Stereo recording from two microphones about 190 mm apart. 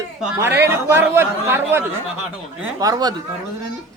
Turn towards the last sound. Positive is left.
turn(degrees=-20)  # may be behind; listen again after turning